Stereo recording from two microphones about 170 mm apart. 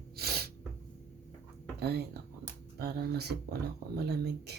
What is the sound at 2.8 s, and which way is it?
Speech, 65° right (ahead or behind).